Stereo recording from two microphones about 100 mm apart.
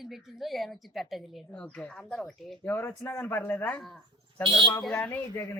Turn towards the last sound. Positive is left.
turn(degrees=20)  # may be behind; listen again after turning